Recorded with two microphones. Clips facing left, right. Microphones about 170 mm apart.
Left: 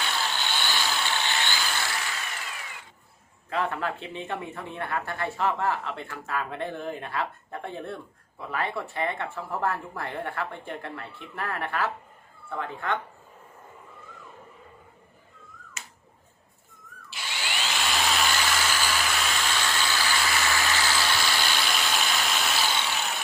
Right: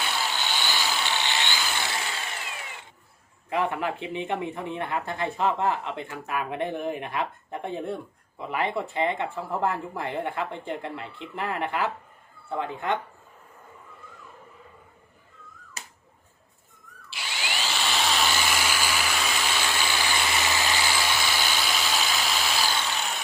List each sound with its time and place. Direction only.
0.0 s vehicle: 10° right (ahead or behind)
1.5 s vehicle: 5° right (ahead or behind)
1.8 s engine: 25° right (ahead or behind)
3.5 s speech: 15° right (ahead or behind)
15.8 s finger snapping: 35° right (ahead or behind)
17.3 s a sound: 10° right (ahead or behind)
22.9 s vehicle: centre (ahead or behind)